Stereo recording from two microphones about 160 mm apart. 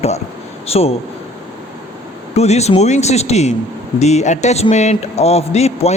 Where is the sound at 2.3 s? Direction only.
45° left (ahead or behind).